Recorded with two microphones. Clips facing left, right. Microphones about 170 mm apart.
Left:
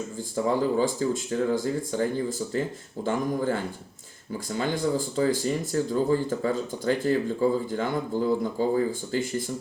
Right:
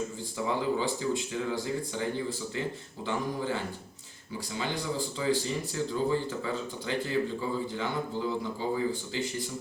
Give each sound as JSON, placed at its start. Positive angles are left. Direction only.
{"t": 0.3, "sound": "speech", "side_deg": 45}